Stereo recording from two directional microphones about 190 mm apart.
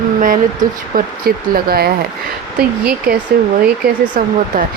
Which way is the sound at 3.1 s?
50° right (ahead or behind).